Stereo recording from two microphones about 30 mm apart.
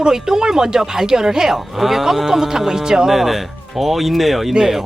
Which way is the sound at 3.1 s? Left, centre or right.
Centre.